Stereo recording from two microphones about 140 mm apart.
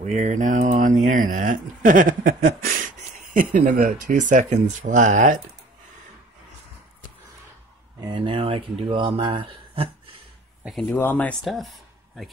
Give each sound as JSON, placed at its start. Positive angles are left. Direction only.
{"t": 0.0, "sound": "speech", "side_deg": -55}
{"t": 8.0, "sound": "speech", "side_deg": -35}
{"t": 10.6, "sound": "speech", "side_deg": 0}
{"t": 10.9, "sound": "speech", "side_deg": 15}
{"t": 11.4, "sound": "speech", "side_deg": 0}